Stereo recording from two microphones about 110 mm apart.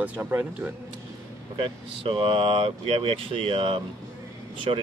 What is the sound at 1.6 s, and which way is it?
Speech, 60° right (ahead or behind).